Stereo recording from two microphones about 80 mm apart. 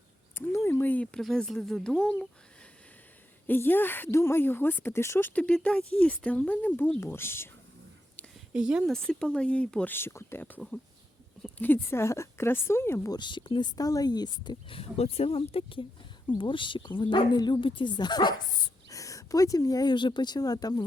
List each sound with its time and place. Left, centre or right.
0.5 s a sound: left
1.1 s a woman's voice: centre
3.4 s speech: left
5.3 s speech: centre
7.0 s speech: left
8.5 s speech: centre
8.9 s speech: centre
9.9 s speech: left
11.4 s speech: left
13.1 s speech: left
16.4 s speech: left
18.9 s speech: left